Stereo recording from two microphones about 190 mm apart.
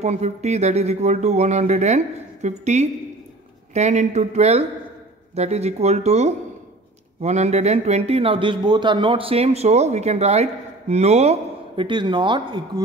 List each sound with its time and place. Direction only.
0.0 s speech: 35° right (ahead or behind)